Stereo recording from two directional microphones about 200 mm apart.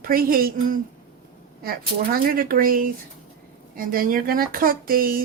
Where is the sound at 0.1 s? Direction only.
45° right (ahead or behind).